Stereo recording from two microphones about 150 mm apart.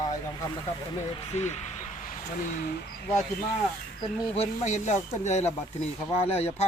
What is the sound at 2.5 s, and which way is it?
Speech, 90° left.